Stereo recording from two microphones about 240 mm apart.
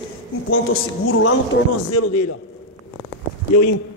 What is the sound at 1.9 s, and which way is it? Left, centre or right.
Speech, left.